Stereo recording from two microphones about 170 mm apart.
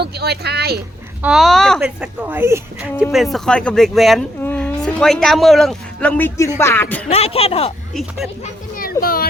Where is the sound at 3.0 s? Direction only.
Centre (ahead or behind).